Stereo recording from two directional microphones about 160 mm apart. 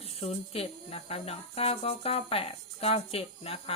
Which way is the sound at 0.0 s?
35° left (ahead or behind).